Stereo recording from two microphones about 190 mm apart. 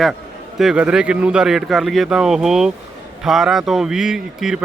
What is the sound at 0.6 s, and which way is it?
Speech, 5° right (ahead or behind).